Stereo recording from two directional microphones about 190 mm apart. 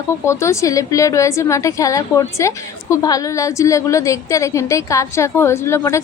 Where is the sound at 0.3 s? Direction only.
15° left (ahead or behind).